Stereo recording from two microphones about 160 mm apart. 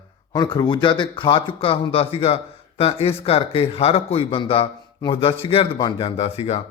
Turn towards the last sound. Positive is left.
turn(degrees=40)  # may be behind; listen again after turning